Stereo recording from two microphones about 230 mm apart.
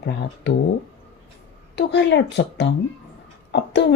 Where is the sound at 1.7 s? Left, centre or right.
Left.